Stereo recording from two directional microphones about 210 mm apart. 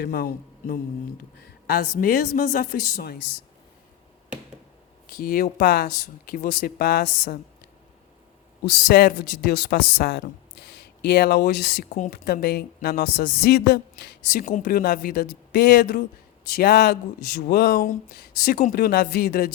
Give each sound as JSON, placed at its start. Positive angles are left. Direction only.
{"t": 0.0, "sound": "speech", "side_deg": 45}
{"t": 2.0, "sound": "speech", "side_deg": 45}
{"t": 5.0, "sound": "speech", "side_deg": 45}
{"t": 8.6, "sound": "speech", "side_deg": 50}
{"t": 14.3, "sound": "speech", "side_deg": 40}